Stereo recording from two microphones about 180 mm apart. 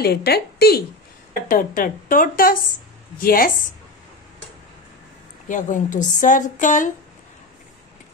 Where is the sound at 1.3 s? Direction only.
50° left (ahead or behind).